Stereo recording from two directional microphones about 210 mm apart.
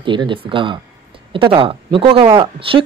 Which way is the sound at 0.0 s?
25° right (ahead or behind).